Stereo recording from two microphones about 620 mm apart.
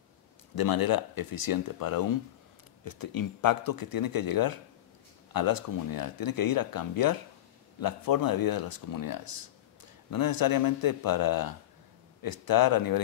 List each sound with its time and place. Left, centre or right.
0.6 s speech: left